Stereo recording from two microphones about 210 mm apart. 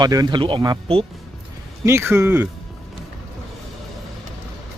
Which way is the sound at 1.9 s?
10° right (ahead or behind).